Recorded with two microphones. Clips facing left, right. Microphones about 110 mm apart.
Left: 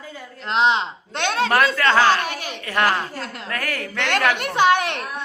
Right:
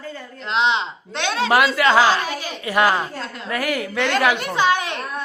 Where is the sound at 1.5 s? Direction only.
10° right (ahead or behind).